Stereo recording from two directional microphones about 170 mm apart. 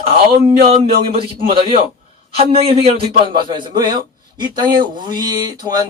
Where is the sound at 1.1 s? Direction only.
35° right (ahead or behind).